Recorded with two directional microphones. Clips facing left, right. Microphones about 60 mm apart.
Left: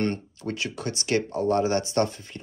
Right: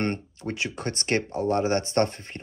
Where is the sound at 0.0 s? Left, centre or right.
Right.